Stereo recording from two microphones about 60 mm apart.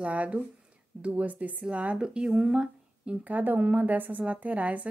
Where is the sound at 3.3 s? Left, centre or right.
Right.